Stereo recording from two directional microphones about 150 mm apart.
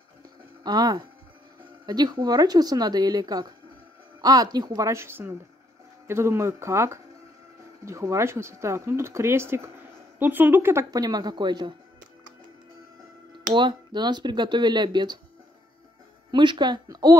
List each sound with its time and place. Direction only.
0.7 s speech: 25° right (ahead or behind)
13.5 s speech: 30° right (ahead or behind)
16.3 s speech: 30° right (ahead or behind)